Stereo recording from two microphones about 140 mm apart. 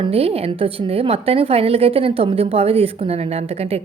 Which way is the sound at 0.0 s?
45° right (ahead or behind).